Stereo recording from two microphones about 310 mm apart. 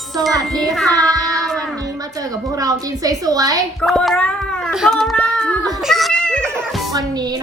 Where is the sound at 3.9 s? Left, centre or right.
Centre.